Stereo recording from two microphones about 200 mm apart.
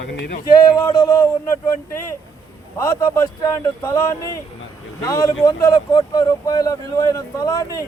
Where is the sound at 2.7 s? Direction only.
15° left (ahead or behind).